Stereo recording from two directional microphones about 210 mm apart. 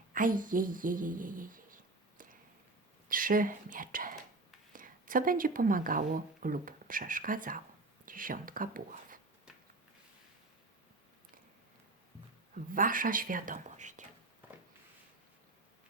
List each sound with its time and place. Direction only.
0.1 s speech: 40° right (ahead or behind)
12.7 s speech: 40° right (ahead or behind)